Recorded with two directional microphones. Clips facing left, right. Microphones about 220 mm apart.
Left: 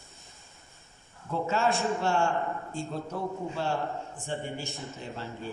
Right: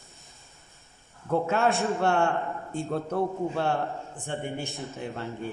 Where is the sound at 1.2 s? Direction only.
60° right (ahead or behind).